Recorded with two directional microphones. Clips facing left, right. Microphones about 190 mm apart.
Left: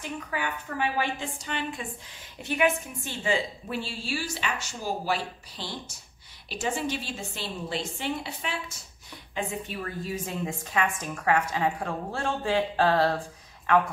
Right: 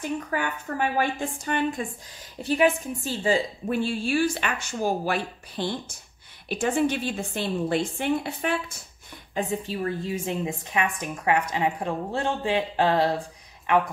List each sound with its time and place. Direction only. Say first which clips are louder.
0.3 s a woman's voice: right 4 dB; 50° right (ahead or behind)
9.5 s a woman's voice: right 6 dB; 30° right (ahead or behind)